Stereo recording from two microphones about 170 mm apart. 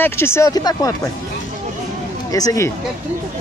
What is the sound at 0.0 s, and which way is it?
Speech, 15° left (ahead or behind).